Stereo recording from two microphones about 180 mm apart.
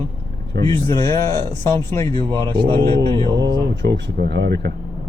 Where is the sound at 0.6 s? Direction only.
20° left (ahead or behind).